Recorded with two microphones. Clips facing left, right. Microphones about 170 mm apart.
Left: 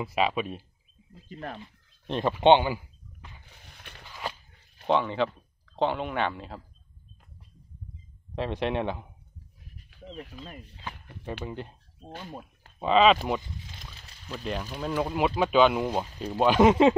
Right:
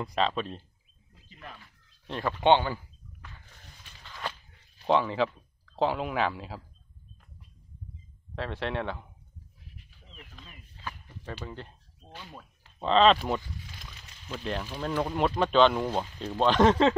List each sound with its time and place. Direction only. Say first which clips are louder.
0.0 s speech: left 2 dB; 10° left (ahead or behind)
1.3 s speech: left 9 dB; 55° left (ahead or behind)
2.0 s speech: left 4 dB; 20° left (ahead or behind)
2.4 s a sound: left 3 dB; 15° left (ahead or behind)
3.7 s a sound: left 6 dB; 60° left (ahead or behind)
4.1 s a sound: left 1 dB; 10° left (ahead or behind)
4.8 s speech: even; centre (ahead or behind)
8.4 s speech: left 4 dB; 15° left (ahead or behind)
11.4 s speech: left 4 dB; 15° left (ahead or behind)
12.1 s speech: left 6 dB; 50° left (ahead or behind)
12.7 s speech: left 1 dB; 10° left (ahead or behind)
14.3 s speech: even; centre (ahead or behind)